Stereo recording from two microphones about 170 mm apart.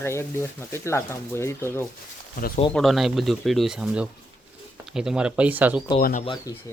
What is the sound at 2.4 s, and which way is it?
Speech, 55° left (ahead or behind).